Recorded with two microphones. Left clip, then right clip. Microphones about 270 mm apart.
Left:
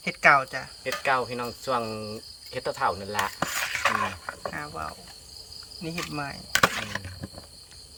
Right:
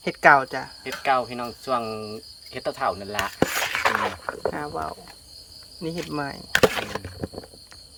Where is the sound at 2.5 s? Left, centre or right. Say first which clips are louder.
Right 1 dB; centre.